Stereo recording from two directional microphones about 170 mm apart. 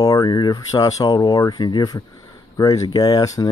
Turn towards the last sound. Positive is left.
turn(degrees=20)  # may be behind; listen again after turning